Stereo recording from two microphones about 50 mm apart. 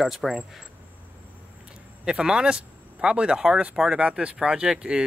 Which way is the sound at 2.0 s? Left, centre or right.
Centre.